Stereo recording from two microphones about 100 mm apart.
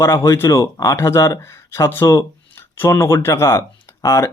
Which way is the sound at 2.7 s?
25° left (ahead or behind).